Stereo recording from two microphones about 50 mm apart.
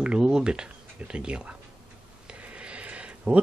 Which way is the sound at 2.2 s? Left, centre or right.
Right.